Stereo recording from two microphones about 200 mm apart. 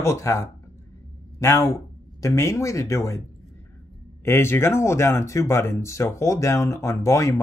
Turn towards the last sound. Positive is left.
turn(degrees=15)  # may be behind; listen again after turning